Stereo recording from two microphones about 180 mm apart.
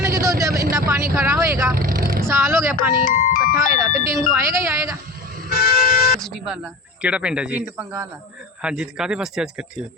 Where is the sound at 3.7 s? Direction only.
15° right (ahead or behind).